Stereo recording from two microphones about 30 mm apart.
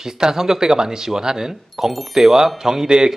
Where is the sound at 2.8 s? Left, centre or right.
Right.